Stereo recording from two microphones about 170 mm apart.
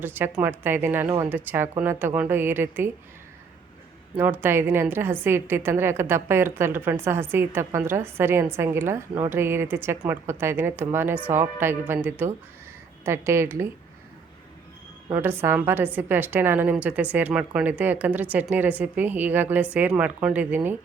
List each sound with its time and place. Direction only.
0.0 s a woman's voice: 10° right (ahead or behind)
4.2 s a woman's voice: 10° right (ahead or behind)
15.1 s a woman's voice: 15° right (ahead or behind)